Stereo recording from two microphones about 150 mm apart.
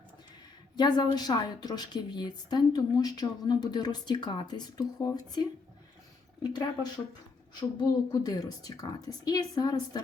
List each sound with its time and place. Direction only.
0.8 s a woman's voice: 30° left (ahead or behind)